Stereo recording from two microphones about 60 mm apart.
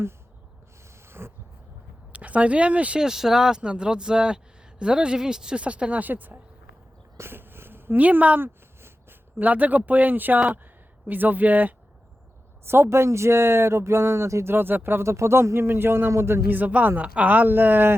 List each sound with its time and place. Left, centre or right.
1.2 s a sound: right
2.1 s speech: right
3.0 s speech: centre; by 6.4 s right
7.2 s a sound: right
8.4 s speech: right
12.6 s speech: right
14.4 s speech: right
15.1 s speech: right
16.5 s speech: right